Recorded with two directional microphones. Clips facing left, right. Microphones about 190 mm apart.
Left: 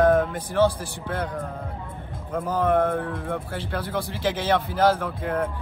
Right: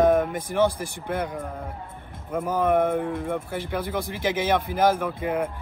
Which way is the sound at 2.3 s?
10° right (ahead or behind).